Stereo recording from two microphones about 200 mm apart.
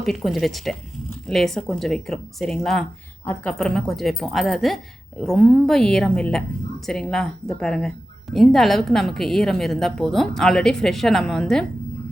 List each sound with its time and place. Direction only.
0.0 s speech: centre (ahead or behind)